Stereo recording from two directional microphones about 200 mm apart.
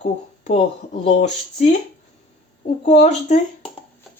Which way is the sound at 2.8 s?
35° left (ahead or behind).